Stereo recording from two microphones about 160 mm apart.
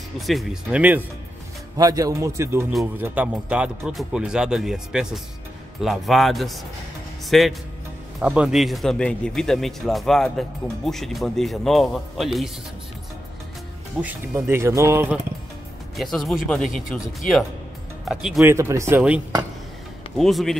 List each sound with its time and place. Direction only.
0.3 s speech: centre (ahead or behind)
1.8 s a man's voice: 20° right (ahead or behind); by 12.4 s centre (ahead or behind)
14.0 s speech: 10° right (ahead or behind)
16.0 s speech: centre (ahead or behind)
18.4 s speech: 15° right (ahead or behind)
20.2 s speech: centre (ahead or behind)